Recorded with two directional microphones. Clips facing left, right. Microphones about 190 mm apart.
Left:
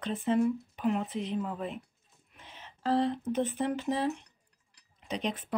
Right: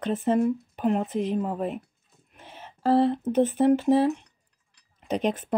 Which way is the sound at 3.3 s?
40° right (ahead or behind).